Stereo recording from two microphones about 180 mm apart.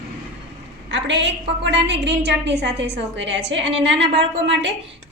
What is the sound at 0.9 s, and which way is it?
A woman's voice, 80° right.